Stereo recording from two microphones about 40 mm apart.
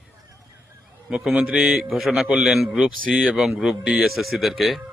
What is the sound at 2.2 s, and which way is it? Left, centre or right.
A man's voice, right.